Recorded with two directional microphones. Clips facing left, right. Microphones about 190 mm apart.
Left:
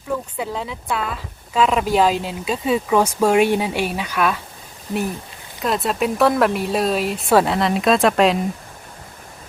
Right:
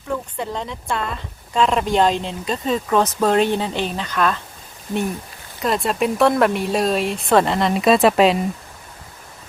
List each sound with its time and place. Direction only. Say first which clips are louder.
0.1 s speech: left 1 dB; 5° left (ahead or behind)
5.5 s speech: right 1 dB; centre (ahead or behind)